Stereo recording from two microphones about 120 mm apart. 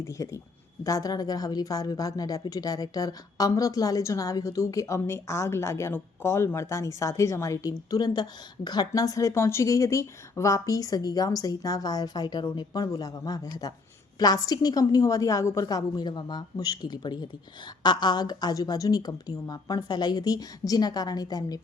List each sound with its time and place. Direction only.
0.2 s a woman's voice: 30° left (ahead or behind)